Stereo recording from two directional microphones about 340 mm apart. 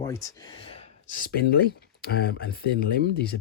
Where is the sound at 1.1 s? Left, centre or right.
Left.